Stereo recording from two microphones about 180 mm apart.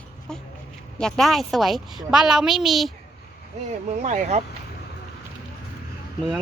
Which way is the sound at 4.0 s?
40° right (ahead or behind).